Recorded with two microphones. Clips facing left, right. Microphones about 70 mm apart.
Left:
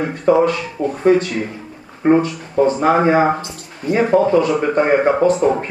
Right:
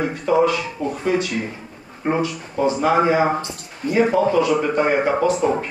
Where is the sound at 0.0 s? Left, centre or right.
Left.